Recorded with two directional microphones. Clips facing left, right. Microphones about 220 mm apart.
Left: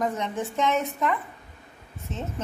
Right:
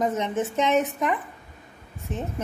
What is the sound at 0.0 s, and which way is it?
A woman's voice, 20° right (ahead or behind).